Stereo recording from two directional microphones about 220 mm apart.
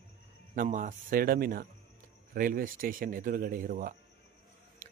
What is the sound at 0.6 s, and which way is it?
A man's voice, 35° right (ahead or behind).